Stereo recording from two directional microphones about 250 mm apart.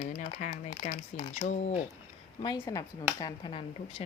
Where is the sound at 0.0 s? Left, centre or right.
Left.